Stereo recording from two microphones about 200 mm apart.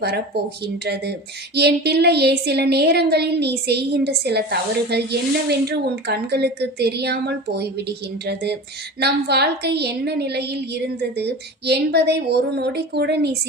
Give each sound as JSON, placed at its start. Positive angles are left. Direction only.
{"t": 0.6, "sound": "a woman's voice", "side_deg": -55}